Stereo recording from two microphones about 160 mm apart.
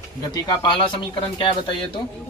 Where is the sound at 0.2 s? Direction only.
25° left (ahead or behind).